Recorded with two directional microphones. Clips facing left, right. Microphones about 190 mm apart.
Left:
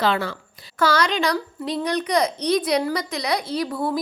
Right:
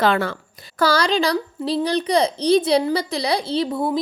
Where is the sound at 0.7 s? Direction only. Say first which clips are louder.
Right 2 dB; 35° right (ahead or behind).